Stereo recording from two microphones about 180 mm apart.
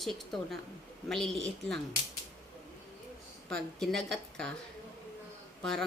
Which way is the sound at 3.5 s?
5° left (ahead or behind).